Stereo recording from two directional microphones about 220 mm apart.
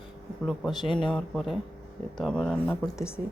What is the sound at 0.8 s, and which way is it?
Speech, 20° left (ahead or behind).